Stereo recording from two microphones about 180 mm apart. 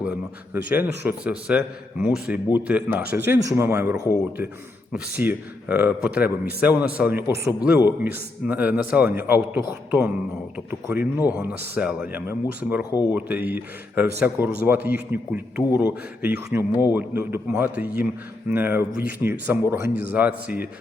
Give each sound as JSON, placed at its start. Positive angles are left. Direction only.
{"t": 0.5, "sound": "a man's voice", "side_deg": -10}
{"t": 12.9, "sound": "speech", "side_deg": 20}
{"t": 13.1, "sound": "a man's voice", "side_deg": -10}